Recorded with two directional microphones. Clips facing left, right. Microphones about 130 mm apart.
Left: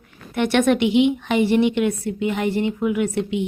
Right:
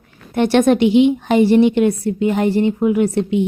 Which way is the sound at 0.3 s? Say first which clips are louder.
Right 5 dB; 35° right (ahead or behind).